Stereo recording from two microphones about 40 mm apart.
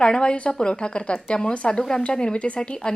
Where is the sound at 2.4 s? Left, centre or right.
Left.